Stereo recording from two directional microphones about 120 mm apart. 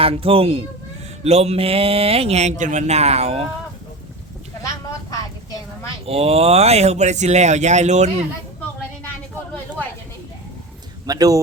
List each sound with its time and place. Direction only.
0.0 s speech: 50° right (ahead or behind)
4.6 s vehicle: 30° left (ahead or behind)
6.1 s speech: 55° right (ahead or behind)
11.0 s speech: 30° right (ahead or behind)